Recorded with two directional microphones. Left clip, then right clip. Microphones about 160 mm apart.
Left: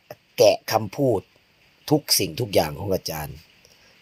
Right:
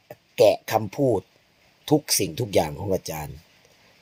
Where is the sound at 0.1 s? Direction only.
10° right (ahead or behind).